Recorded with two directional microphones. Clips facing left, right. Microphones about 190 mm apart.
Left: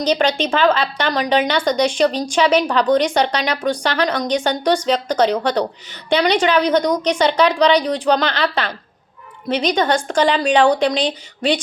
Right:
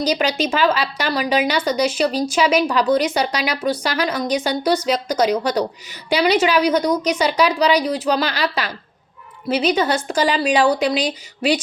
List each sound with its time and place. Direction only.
0.0 s a woman's voice: 10° right (ahead or behind)